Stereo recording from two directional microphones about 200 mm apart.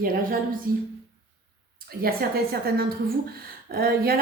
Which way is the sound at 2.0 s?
50° right (ahead or behind).